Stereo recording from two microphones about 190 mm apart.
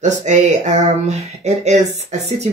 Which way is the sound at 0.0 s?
40° right (ahead or behind).